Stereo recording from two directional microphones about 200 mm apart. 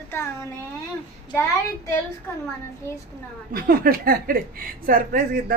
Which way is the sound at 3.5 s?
45° right (ahead or behind).